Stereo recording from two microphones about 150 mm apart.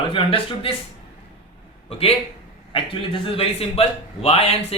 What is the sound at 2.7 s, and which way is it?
A man's voice, 35° left (ahead or behind).